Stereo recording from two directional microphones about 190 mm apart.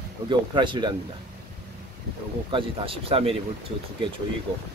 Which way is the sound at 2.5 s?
30° right (ahead or behind).